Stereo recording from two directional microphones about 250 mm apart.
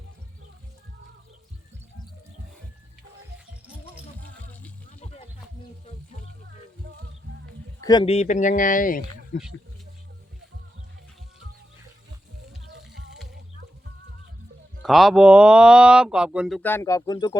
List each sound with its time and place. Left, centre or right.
7.8 s speech: centre; by 9.4 s left
12.7 s music: right
14.8 s speech: centre